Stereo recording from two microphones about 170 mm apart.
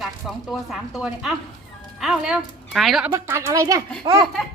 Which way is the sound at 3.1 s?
15° right (ahead or behind).